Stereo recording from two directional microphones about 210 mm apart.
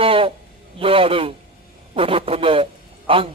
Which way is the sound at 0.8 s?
25° right (ahead or behind).